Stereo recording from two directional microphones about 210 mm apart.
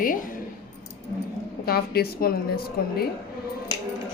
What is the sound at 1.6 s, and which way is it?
A woman's voice, 45° left (ahead or behind).